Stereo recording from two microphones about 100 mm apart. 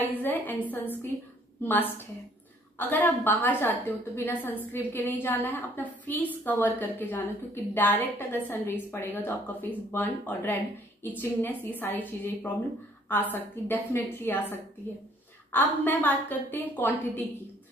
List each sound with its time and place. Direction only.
0.1 s a woman's voice: 20° left (ahead or behind)
13.1 s a woman's voice: 20° left (ahead or behind)